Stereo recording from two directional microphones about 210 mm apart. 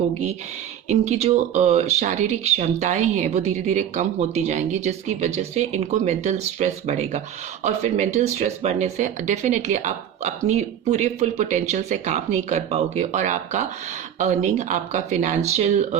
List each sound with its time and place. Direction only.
0.9 s speech: 30° right (ahead or behind)